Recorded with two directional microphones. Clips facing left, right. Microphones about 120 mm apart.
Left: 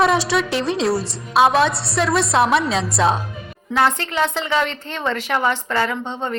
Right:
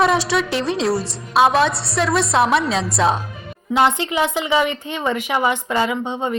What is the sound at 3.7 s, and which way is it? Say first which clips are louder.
A woman's voice: right 2 dB; 20° right (ahead or behind).